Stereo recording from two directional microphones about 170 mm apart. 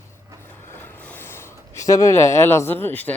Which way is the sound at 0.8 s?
10° left (ahead or behind).